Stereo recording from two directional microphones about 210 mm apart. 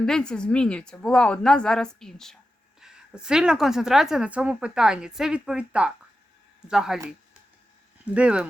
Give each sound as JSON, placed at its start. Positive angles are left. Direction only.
{"t": 0.0, "sound": "a woman's voice", "side_deg": 5}
{"t": 8.1, "sound": "a woman's voice", "side_deg": -5}